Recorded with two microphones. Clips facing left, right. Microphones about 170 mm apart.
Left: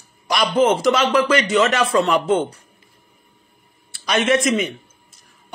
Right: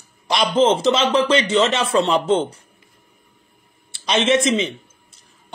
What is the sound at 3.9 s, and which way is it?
Speech, 25° right (ahead or behind).